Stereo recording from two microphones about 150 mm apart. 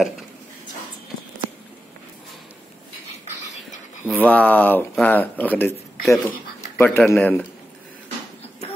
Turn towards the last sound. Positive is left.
turn(degrees=5)  # may be behind; listen again after turning